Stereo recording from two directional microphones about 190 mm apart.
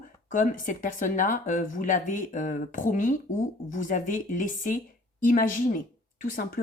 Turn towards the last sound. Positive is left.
turn(degrees=50)  # may be behind; listen again after turning